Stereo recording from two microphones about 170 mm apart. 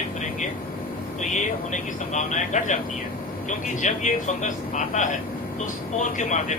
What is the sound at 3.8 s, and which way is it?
Speech, 45° left (ahead or behind).